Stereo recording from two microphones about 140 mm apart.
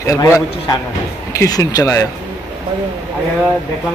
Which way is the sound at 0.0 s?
25° left (ahead or behind).